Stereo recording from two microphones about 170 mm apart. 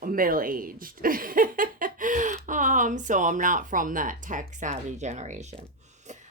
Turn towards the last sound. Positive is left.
turn(degrees=-45)  # may be behind; listen again after turning